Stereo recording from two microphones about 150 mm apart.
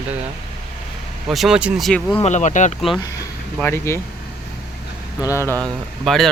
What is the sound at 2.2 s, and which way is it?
Speech, 55° left (ahead or behind).